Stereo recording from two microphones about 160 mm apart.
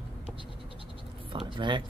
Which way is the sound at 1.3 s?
30° right (ahead or behind).